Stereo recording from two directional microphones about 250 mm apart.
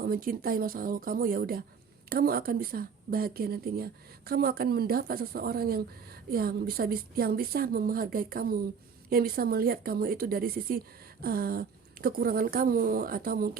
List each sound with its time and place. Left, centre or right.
0.0 s speech: right